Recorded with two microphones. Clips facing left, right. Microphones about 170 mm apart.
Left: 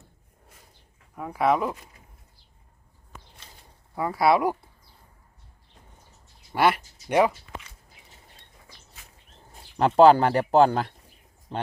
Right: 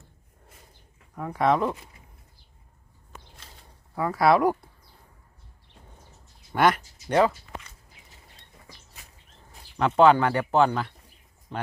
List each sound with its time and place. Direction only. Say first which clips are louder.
1.1 s speech: even; 5° left (ahead or behind)
3.9 s speech: right 1 dB; 20° left (ahead or behind)
4.2 s speech: right 1 dB; 10° left (ahead or behind)
6.5 s speech: even; 10° left (ahead or behind)
9.7 s speech: left 3 dB; 35° left (ahead or behind)